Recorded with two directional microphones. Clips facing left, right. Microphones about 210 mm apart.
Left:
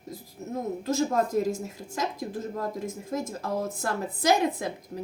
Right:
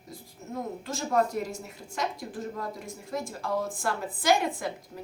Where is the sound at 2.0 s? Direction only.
40° left (ahead or behind).